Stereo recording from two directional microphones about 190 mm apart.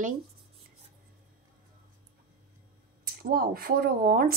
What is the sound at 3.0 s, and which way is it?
Speech, 55° right (ahead or behind).